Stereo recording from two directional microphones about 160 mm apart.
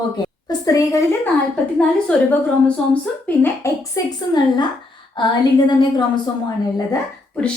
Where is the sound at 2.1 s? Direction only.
5° left (ahead or behind).